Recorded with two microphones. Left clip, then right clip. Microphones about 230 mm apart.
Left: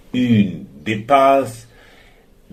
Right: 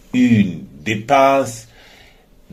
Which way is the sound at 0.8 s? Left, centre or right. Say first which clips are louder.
Even; right.